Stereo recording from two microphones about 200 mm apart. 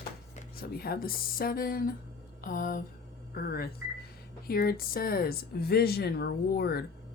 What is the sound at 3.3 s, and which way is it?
Speech, 50° left (ahead or behind).